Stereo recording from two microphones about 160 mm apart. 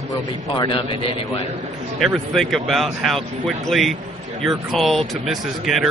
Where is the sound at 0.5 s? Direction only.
30° left (ahead or behind).